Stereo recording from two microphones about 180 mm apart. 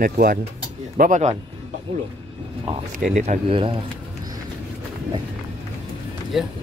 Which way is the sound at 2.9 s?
45° right (ahead or behind).